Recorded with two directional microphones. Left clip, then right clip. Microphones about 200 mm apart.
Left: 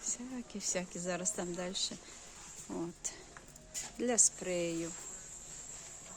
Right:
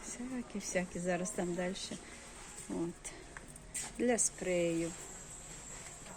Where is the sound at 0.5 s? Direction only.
15° left (ahead or behind).